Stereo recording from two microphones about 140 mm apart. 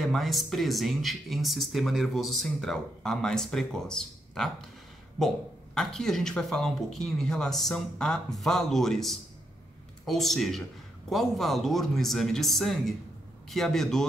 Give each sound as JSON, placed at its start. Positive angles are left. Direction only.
{"t": 0.0, "sound": "speech", "side_deg": 0}